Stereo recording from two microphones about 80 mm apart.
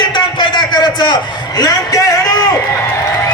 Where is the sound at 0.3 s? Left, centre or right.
Left.